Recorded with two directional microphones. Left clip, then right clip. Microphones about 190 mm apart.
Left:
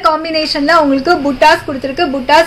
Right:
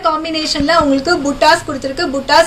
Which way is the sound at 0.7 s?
45° left (ahead or behind).